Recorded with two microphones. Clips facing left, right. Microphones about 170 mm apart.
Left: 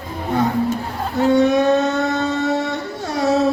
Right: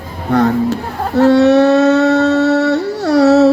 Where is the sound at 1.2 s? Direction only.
75° right (ahead or behind).